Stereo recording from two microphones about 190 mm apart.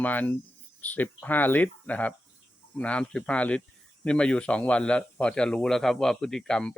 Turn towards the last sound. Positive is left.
turn(degrees=5)  # may be behind; listen again after turning